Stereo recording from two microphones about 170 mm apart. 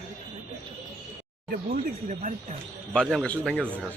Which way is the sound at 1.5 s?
55° right (ahead or behind).